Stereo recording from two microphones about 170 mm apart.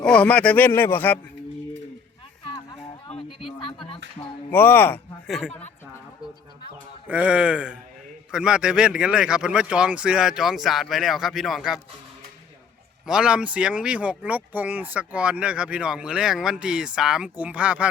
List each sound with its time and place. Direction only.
0.0 s speech: 5° left (ahead or behind)
3.6 s music: 30° left (ahead or behind)
4.5 s a man's voice: 10° left (ahead or behind)
7.1 s a man's voice: 10° right (ahead or behind)
13.1 s speech: 5° right (ahead or behind)